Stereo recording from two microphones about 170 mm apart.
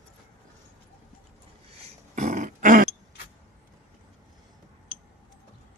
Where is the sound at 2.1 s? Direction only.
45° right (ahead or behind).